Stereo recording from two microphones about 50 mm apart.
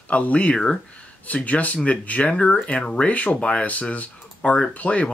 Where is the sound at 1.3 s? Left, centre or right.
Left.